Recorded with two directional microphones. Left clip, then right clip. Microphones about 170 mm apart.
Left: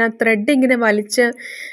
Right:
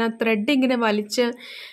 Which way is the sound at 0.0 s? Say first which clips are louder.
Left 6 dB; 25° left (ahead or behind).